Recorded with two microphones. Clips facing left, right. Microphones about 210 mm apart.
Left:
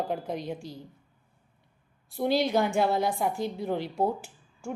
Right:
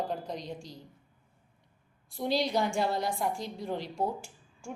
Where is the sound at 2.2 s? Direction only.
Centre (ahead or behind).